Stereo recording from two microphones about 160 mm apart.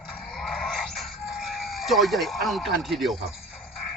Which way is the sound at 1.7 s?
Centre (ahead or behind).